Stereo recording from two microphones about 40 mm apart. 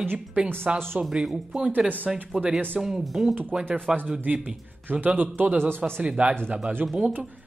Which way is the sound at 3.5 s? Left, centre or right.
Right.